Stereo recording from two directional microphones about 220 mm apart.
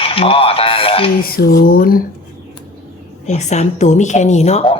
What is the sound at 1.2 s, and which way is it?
Speech, 40° left (ahead or behind).